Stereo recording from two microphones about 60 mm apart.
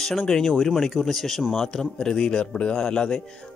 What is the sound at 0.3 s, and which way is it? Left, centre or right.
A man's voice, centre.